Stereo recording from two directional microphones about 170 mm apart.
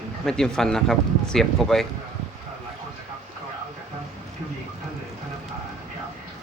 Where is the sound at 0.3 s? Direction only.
5° left (ahead or behind).